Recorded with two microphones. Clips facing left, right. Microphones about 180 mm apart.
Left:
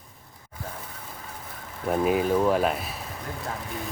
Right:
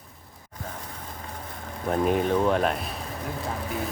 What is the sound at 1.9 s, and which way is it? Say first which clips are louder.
Speech: even; 5° left (ahead or behind).